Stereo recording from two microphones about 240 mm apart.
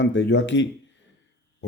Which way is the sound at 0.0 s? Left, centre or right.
Left.